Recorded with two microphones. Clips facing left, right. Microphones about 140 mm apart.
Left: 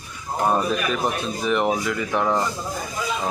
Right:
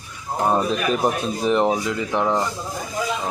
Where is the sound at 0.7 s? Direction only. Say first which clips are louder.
Right 3 dB; 30° right (ahead or behind).